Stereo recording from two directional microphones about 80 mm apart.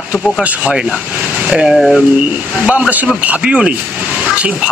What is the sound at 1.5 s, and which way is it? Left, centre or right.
Speech, centre.